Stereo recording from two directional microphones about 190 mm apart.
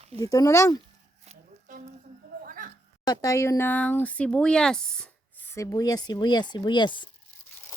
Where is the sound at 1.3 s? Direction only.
45° right (ahead or behind).